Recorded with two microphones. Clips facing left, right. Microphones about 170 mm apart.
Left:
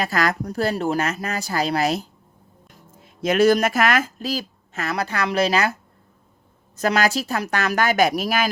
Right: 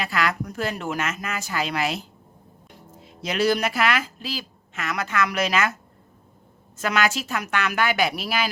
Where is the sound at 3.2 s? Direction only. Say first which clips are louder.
Left 6 dB; 50° left (ahead or behind); by 5.7 s 30° left (ahead or behind).